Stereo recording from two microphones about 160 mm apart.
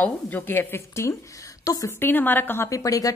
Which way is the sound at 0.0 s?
10° left (ahead or behind).